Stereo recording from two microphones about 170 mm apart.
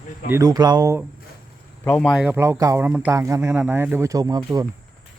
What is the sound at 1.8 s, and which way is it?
Speech, 5° left (ahead or behind).